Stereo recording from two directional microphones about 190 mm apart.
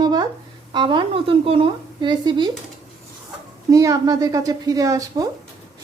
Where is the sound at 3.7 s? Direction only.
20° right (ahead or behind).